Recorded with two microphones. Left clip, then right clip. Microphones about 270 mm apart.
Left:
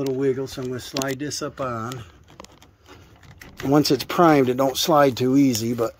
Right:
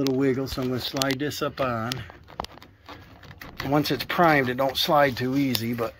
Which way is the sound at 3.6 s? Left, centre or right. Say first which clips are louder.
Left 5 dB; left.